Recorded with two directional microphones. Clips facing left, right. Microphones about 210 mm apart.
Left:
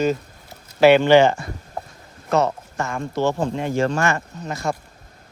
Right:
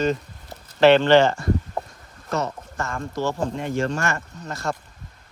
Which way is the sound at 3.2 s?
65° left (ahead or behind).